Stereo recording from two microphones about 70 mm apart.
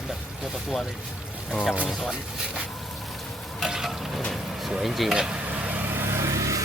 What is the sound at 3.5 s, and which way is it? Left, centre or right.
Frying, centre.